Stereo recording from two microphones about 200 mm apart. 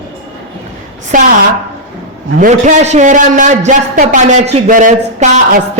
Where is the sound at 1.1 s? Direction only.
40° right (ahead or behind).